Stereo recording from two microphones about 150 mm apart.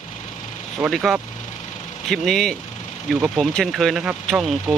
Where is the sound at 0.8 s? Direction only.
Centre (ahead or behind).